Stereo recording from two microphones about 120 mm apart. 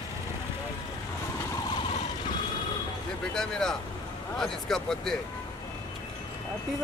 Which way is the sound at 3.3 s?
5° left (ahead or behind).